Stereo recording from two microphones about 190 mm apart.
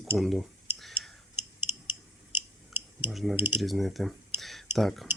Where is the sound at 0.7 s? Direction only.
Centre (ahead or behind).